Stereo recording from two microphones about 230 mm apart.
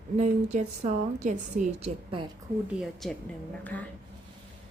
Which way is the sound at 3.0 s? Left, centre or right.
Centre.